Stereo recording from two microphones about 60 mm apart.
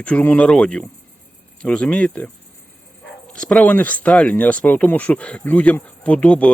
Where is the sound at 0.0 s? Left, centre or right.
Left.